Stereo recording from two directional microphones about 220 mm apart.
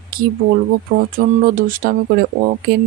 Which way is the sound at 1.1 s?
40° right (ahead or behind).